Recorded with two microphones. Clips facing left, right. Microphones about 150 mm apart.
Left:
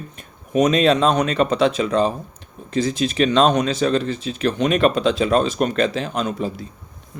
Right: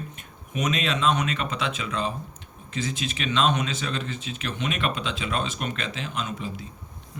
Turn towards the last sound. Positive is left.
turn(degrees=40)  # may be behind; listen again after turning